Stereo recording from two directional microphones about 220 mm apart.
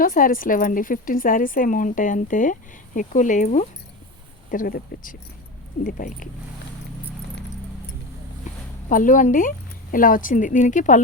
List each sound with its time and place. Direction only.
0.0 s speech: 40° left (ahead or behind)
8.9 s speech: 35° left (ahead or behind)